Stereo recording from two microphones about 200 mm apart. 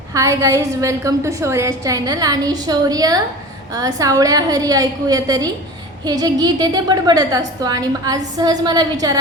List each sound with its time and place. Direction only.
0.1 s a woman's voice: 15° right (ahead or behind)